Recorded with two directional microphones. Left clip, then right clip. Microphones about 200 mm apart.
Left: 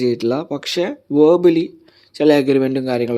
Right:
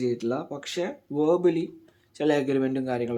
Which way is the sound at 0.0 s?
40° left (ahead or behind).